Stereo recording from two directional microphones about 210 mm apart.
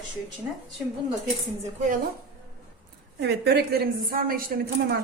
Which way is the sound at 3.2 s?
50° right (ahead or behind).